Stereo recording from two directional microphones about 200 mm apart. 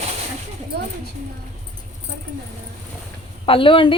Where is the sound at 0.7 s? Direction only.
55° right (ahead or behind).